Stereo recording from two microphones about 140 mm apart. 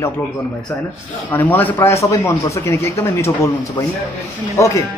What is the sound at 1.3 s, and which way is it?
A man's voice, 10° left (ahead or behind).